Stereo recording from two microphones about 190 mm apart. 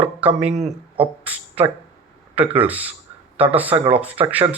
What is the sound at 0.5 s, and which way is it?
Speech, 35° right (ahead or behind).